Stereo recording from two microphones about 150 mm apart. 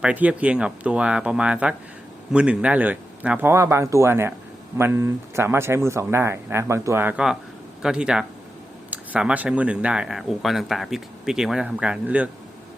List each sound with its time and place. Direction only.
0.0 s speech: 10° right (ahead or behind)